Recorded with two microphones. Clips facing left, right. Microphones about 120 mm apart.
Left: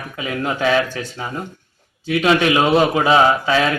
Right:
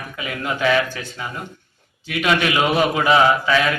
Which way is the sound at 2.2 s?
30° left (ahead or behind).